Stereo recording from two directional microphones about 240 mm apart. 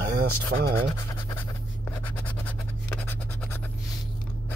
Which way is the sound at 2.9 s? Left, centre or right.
Centre.